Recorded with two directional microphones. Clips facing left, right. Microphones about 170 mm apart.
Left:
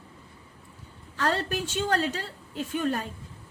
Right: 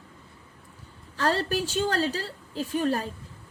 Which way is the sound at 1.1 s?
35° right (ahead or behind).